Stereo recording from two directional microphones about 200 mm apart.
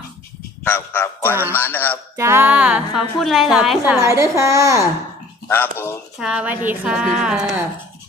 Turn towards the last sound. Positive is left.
turn(degrees=-5)  # may be behind; listen again after turning